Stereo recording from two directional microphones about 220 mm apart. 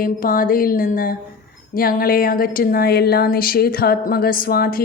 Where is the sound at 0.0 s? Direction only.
40° left (ahead or behind).